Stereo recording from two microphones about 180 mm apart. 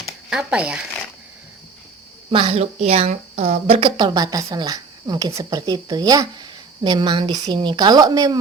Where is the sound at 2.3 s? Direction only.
30° right (ahead or behind).